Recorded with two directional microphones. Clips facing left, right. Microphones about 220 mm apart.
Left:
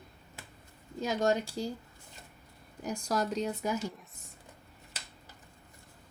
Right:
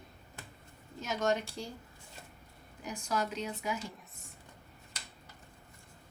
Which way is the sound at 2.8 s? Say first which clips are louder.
Left 3 dB; 40° left (ahead or behind).